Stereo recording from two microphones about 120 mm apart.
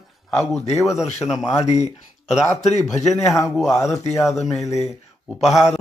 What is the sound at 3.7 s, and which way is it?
Speech, 25° left (ahead or behind).